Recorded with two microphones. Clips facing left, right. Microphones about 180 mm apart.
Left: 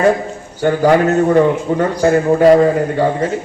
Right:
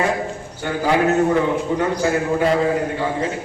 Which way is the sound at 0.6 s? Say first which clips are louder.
Left 7 dB; 55° left (ahead or behind).